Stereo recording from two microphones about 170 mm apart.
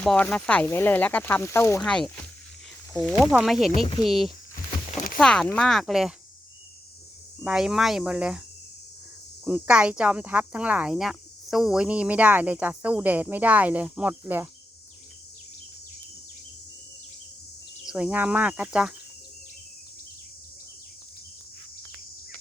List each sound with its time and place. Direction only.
0.0 s speech: 5° left (ahead or behind)
1.8 s speech: 5° left (ahead or behind)
4.9 s a sound: 50° left (ahead or behind)
5.1 s speech: 5° left (ahead or behind)
7.4 s speech: 5° right (ahead or behind)
9.4 s speech: 5° right (ahead or behind)
17.8 s speech: 5° right (ahead or behind)